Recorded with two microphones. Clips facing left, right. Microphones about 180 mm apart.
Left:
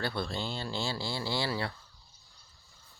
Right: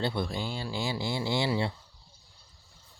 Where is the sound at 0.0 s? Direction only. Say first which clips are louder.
Right 3 dB; 15° right (ahead or behind).